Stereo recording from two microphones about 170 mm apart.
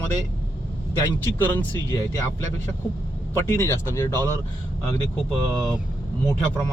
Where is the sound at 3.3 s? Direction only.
15° left (ahead or behind).